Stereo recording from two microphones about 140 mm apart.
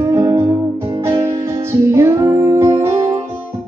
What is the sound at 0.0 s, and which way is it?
Music, 20° right (ahead or behind).